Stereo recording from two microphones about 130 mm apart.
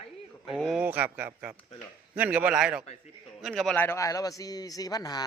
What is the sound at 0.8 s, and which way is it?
A man's voice, 15° right (ahead or behind).